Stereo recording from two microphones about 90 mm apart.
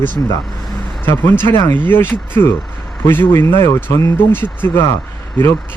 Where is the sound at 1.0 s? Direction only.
25° left (ahead or behind).